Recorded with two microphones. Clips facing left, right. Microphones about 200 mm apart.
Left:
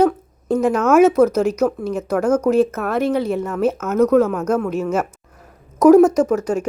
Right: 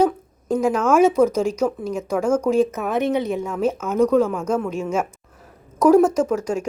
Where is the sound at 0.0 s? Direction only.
10° right (ahead or behind).